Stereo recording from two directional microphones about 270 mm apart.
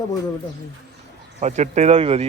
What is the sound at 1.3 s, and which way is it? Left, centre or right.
Speech, right.